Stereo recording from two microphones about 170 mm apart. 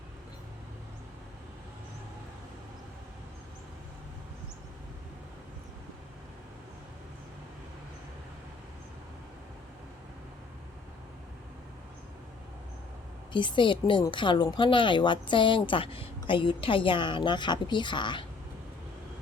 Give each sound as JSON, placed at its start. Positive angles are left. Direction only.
{"t": 13.3, "sound": "a woman's voice", "side_deg": 30}